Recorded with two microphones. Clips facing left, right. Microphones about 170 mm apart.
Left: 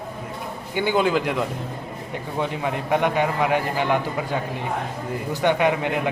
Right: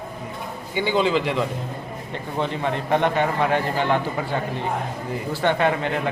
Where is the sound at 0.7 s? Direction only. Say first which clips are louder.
Left 1 dB; 50° left (ahead or behind).